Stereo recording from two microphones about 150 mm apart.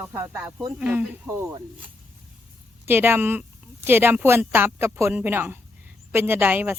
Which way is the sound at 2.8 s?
15° right (ahead or behind).